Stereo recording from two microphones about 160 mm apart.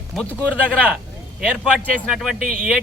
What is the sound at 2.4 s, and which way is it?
Speech, 60° right (ahead or behind).